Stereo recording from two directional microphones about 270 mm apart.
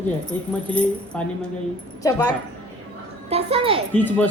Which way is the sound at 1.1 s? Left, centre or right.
Centre.